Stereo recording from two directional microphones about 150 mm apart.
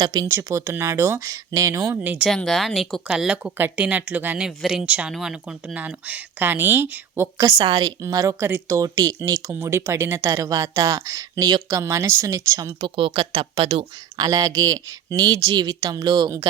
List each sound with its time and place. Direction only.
0.0 s a woman's voice: 25° right (ahead or behind)
7.5 s a woman's voice: 35° right (ahead or behind)
12.8 s speech: 35° right (ahead or behind)
14.3 s a woman's voice: 25° right (ahead or behind)